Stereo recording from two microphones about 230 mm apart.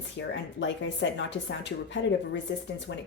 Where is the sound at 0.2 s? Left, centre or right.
Left.